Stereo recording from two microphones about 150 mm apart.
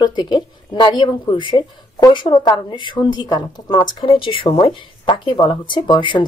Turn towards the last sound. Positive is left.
turn(degrees=35)  # may be behind; listen again after turning